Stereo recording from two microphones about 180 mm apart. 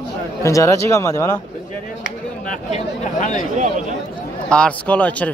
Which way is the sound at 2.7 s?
40° left (ahead or behind).